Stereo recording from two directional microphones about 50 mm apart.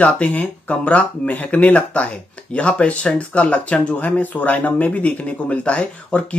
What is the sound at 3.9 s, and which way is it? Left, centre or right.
Speech, left.